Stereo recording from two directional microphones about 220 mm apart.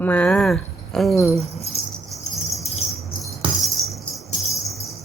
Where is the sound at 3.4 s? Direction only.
25° right (ahead or behind).